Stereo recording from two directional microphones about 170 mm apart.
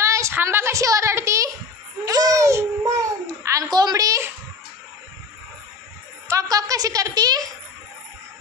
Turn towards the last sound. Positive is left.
turn(degrees=-25)  # may be behind; listen again after turning